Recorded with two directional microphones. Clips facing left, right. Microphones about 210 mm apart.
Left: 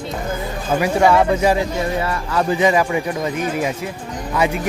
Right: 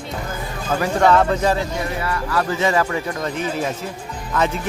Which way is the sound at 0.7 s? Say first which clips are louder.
Left 1 dB; 10° left (ahead or behind).